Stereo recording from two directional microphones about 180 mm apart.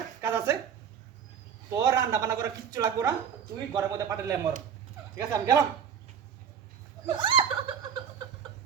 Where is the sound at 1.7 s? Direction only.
20° right (ahead or behind).